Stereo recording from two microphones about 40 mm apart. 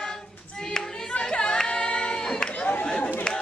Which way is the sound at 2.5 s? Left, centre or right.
Left.